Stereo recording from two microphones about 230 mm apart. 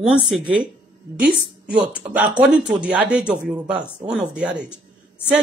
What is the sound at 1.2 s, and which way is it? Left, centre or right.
Speech, centre.